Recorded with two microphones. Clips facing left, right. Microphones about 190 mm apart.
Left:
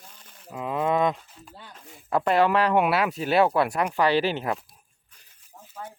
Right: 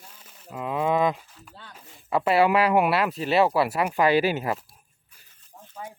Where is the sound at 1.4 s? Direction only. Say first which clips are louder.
Left 2 dB; 15° left (ahead or behind).